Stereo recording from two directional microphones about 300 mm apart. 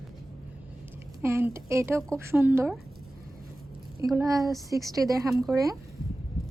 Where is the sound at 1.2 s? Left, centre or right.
Centre.